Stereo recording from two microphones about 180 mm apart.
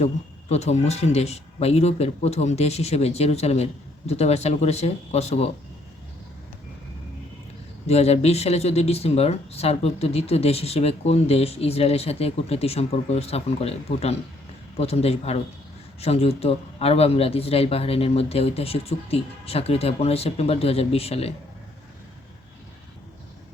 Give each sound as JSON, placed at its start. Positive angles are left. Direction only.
{"t": 0.0, "sound": "speech", "side_deg": 35}
{"t": 7.9, "sound": "speech", "side_deg": 35}